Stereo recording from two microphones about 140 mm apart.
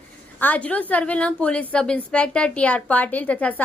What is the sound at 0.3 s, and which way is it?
A woman's voice, 10° left (ahead or behind).